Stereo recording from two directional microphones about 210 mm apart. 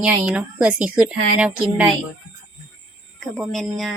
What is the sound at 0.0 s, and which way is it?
Speech, 5° right (ahead or behind).